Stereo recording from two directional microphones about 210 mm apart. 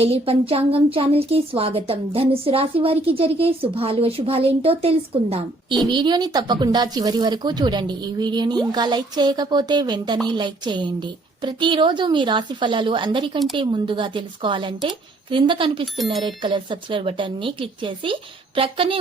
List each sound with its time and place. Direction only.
0.0 s a woman's voice: 25° right (ahead or behind)